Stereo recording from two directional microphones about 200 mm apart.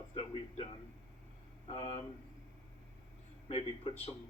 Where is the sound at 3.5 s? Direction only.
30° left (ahead or behind).